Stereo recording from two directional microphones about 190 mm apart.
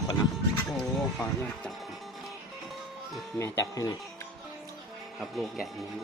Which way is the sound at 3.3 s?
15° left (ahead or behind).